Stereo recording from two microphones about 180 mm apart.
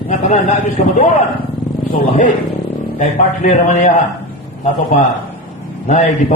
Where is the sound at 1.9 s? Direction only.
45° left (ahead or behind).